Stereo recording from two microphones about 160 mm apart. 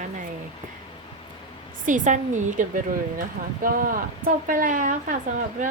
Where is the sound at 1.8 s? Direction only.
50° right (ahead or behind).